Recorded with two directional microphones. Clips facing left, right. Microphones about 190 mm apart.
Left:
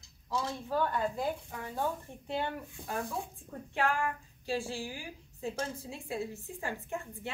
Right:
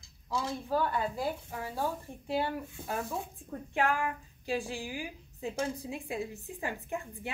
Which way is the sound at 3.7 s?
15° right (ahead or behind).